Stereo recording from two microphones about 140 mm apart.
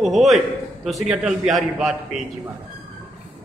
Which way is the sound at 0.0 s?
Centre (ahead or behind).